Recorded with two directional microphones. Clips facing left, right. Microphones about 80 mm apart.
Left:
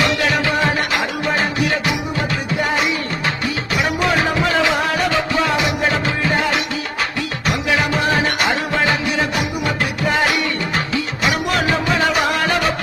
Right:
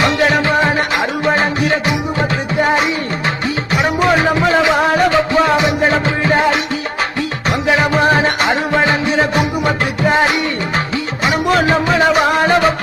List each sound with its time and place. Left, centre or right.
0.0 s music: right